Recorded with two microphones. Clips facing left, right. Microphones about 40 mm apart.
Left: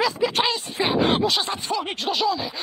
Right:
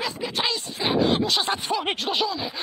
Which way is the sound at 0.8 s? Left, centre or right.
Left.